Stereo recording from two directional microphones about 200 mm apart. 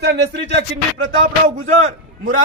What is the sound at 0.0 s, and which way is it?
Music, 60° right (ahead or behind).